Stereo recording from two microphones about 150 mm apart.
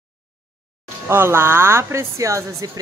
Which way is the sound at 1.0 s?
15° right (ahead or behind).